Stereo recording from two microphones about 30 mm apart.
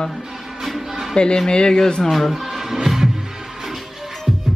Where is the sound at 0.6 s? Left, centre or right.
Centre.